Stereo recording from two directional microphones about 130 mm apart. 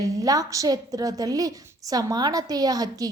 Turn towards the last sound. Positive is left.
turn(degrees=-30)  # may be behind; listen again after turning